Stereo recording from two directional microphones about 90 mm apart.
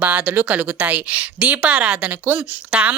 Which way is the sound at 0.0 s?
15° right (ahead or behind).